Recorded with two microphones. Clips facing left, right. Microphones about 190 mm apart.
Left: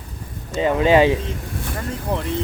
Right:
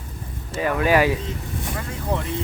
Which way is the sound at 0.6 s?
25° left (ahead or behind).